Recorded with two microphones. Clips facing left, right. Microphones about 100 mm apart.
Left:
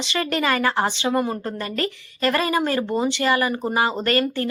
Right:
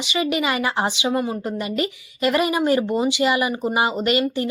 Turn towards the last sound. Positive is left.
turn(degrees=-15)  # may be behind; listen again after turning